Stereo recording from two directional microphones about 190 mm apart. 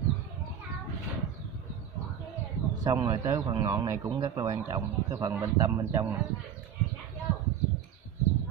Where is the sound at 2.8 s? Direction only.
20° right (ahead or behind).